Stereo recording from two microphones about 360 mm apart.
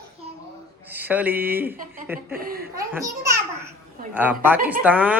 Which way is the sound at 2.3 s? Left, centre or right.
Right.